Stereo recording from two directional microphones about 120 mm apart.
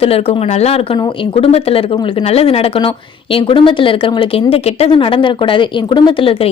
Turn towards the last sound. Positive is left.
turn(degrees=45)  # may be behind; listen again after turning